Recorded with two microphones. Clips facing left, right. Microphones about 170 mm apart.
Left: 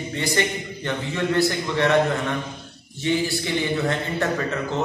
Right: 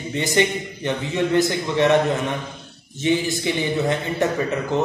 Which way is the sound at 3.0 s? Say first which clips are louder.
Right 2 dB; 20° right (ahead or behind).